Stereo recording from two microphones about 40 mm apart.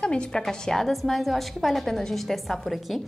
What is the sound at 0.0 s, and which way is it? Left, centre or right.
Speech, left.